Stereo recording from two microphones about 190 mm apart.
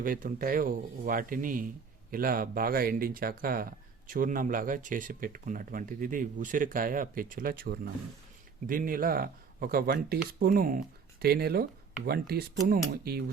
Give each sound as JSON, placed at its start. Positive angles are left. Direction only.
{"t": 0.0, "sound": "speech", "side_deg": -45}